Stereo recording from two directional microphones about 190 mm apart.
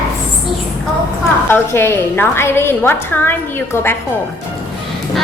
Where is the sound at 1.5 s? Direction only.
10° left (ahead or behind).